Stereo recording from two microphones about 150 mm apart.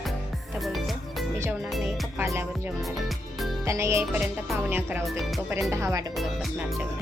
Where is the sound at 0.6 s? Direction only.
Centre (ahead or behind).